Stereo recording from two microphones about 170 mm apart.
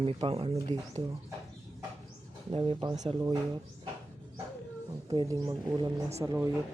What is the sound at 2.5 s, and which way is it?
Speech, 30° right (ahead or behind).